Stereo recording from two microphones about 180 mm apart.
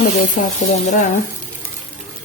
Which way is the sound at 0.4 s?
50° left (ahead or behind).